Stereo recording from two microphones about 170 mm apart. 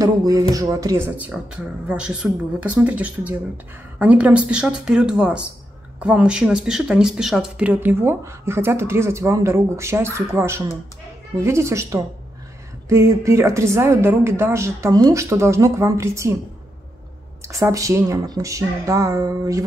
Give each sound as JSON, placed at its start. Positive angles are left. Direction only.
{"t": 0.0, "sound": "speech", "side_deg": -20}
{"t": 17.5, "sound": "speech", "side_deg": -20}